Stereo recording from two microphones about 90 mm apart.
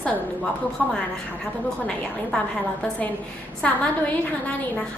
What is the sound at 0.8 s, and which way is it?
Speech, 10° left (ahead or behind).